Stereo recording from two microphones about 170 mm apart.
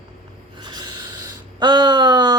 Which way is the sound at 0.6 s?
25° right (ahead or behind).